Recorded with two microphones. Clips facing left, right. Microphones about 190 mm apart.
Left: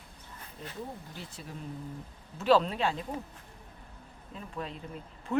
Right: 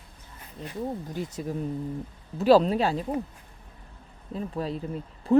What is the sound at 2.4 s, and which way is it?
Speech, 40° right (ahead or behind).